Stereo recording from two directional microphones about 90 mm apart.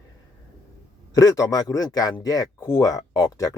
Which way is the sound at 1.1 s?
40° left (ahead or behind).